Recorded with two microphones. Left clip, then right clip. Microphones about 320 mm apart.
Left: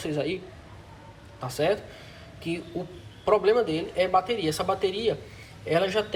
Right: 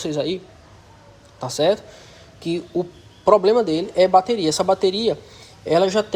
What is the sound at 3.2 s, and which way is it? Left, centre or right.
Speech, centre.